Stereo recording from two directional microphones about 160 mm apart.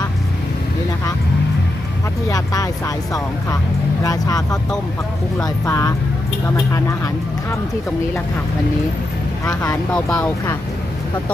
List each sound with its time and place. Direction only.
2.3 s speech: 20° left (ahead or behind)
9.9 s speech: 5° left (ahead or behind)